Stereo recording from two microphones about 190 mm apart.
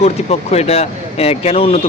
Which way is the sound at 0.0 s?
35° left (ahead or behind).